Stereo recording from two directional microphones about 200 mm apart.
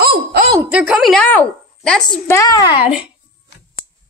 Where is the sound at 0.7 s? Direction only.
5° right (ahead or behind).